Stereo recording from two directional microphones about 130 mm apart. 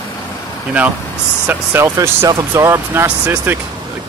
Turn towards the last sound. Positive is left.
turn(degrees=-15)  # may be behind; listen again after turning